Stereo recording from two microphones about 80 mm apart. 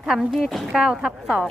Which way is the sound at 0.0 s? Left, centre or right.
Centre.